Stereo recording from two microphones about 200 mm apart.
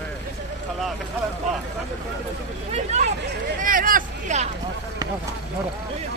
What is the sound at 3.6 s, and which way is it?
Vehicle, 45° right (ahead or behind).